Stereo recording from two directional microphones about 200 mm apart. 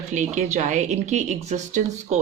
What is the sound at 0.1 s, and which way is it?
A woman's voice, 35° right (ahead or behind).